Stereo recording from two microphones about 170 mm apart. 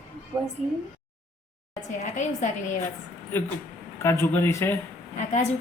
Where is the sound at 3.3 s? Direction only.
15° left (ahead or behind).